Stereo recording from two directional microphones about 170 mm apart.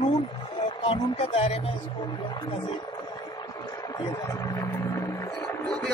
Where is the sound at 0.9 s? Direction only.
40° left (ahead or behind).